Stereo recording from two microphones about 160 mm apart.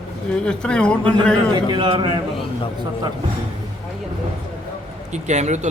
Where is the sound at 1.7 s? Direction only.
30° right (ahead or behind).